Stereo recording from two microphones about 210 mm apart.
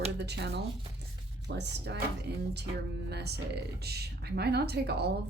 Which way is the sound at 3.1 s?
50° right (ahead or behind).